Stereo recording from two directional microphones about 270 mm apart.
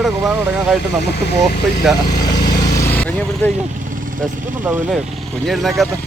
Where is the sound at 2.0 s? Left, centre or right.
Centre.